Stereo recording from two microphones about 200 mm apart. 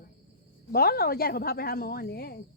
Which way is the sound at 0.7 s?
50° left (ahead or behind).